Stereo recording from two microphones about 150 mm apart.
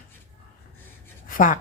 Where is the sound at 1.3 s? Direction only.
60° left (ahead or behind).